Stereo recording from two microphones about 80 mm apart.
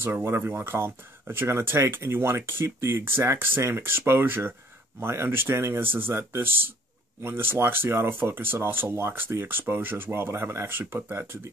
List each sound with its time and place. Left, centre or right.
0.0 s speech: right